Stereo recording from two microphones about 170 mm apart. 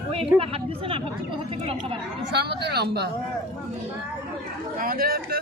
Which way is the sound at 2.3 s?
75° right (ahead or behind).